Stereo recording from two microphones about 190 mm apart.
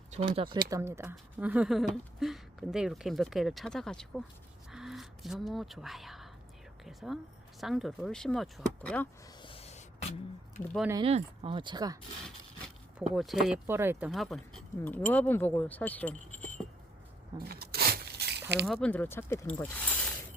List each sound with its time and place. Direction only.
0.1 s speech: 35° right (ahead or behind)
0.7 s speech: 15° right (ahead or behind); by 4.2 s centre (ahead or behind)
4.7 s a sound: centre (ahead or behind)
6.8 s speech: centre (ahead or behind)
9.4 s a sound: 30° left (ahead or behind)
10.9 s speech: 30° right (ahead or behind)
12.6 s speech: centre (ahead or behind)
14.1 s speech: centre (ahead or behind)
17.4 s rub: 55° right (ahead or behind)
18.6 s speech: 5° left (ahead or behind)